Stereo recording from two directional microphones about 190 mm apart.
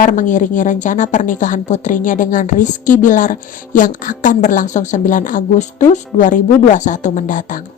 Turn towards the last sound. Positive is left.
turn(degrees=45)  # may be behind; listen again after turning